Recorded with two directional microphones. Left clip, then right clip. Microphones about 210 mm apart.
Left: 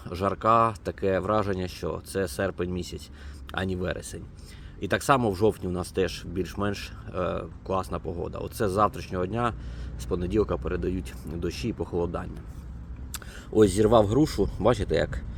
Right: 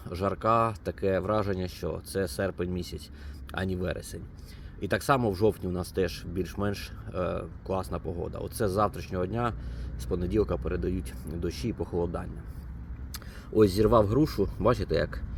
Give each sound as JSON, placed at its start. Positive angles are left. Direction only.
{"t": 0.0, "sound": "speech", "side_deg": 5}